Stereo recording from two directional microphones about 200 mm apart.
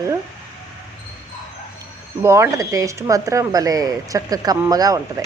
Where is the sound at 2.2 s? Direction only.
15° right (ahead or behind).